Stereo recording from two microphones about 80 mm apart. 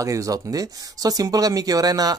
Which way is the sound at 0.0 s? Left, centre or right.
Right.